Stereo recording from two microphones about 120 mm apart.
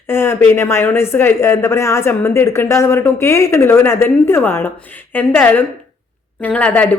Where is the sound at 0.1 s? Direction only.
20° left (ahead or behind).